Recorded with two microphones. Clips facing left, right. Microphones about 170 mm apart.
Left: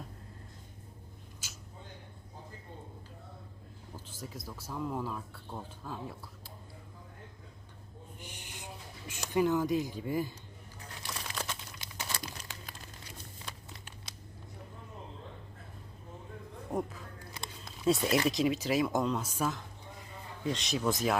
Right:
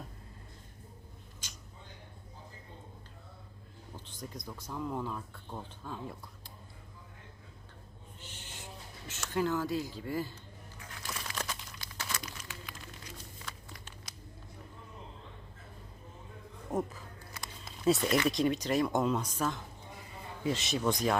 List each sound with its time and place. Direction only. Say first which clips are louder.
1.4 s a sound: even; 5° left (ahead or behind)
3.9 s speech: even; 5° left (ahead or behind)
8.2 s a sound: left 1 dB; 15° left (ahead or behind)
9.3 s speech: left 3 dB; 15° left (ahead or behind)
11.1 s crumpling: right 1 dB; 5° right (ahead or behind)
11.8 s crumpling: even; 20° left (ahead or behind)
12.1 s crumpling: left 1 dB; 30° left (ahead or behind)
16.7 s a sound: right 1 dB; centre (ahead or behind)
18.3 s speech: even; centre (ahead or behind)